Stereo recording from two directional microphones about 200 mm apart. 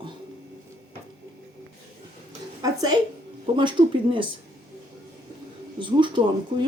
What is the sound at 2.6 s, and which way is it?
A woman's voice, 20° right (ahead or behind).